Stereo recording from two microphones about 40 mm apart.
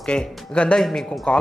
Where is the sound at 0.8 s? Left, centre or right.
Centre.